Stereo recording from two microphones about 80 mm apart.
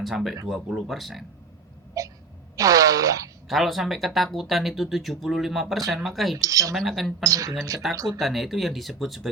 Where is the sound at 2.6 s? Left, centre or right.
Right.